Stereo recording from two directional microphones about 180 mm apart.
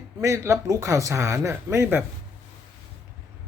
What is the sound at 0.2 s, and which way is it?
Speech, 15° right (ahead or behind).